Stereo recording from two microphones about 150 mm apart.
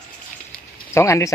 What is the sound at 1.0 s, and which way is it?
Speech, 20° left (ahead or behind).